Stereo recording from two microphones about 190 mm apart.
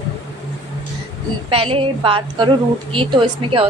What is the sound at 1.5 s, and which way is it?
A woman's voice, 30° right (ahead or behind).